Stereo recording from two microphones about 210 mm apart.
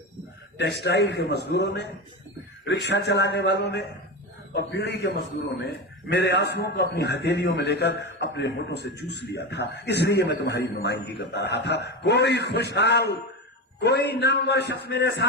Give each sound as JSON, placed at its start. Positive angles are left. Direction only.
{"t": 0.6, "sound": "a man's voice", "side_deg": 55}